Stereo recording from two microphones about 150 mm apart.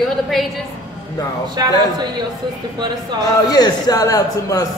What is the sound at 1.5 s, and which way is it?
Speech, 30° right (ahead or behind).